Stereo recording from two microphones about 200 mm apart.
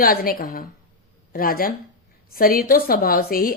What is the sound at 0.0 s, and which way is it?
Speech, 45° left (ahead or behind).